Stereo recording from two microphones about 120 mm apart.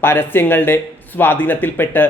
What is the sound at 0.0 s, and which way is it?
A man's voice, 15° left (ahead or behind).